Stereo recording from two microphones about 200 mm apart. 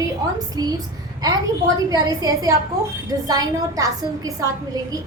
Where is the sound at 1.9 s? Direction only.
15° right (ahead or behind).